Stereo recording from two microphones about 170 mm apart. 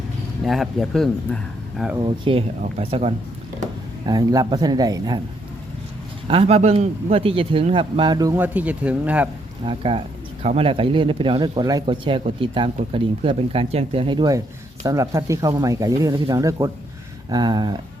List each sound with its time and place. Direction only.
0.4 s speech: centre (ahead or behind)
2.0 s speech: 30° right (ahead or behind)
4.0 s speech: 25° right (ahead or behind)
6.2 s speech: 30° right (ahead or behind)
8.4 s speech: 10° right (ahead or behind)
9.6 s speech: 30° right (ahead or behind)